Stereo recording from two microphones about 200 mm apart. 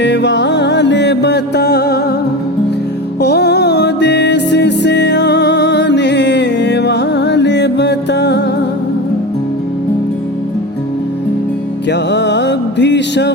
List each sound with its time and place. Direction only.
0.0 s music: 60° left (ahead or behind)
3.2 s music: 55° left (ahead or behind)
11.9 s music: 60° left (ahead or behind)